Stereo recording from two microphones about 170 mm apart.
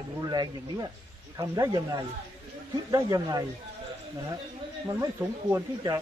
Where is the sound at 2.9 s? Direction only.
20° right (ahead or behind).